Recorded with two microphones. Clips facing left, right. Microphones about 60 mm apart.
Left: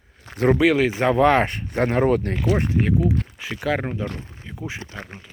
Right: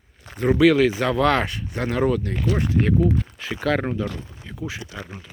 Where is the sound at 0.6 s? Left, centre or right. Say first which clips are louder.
Right 2 dB; left.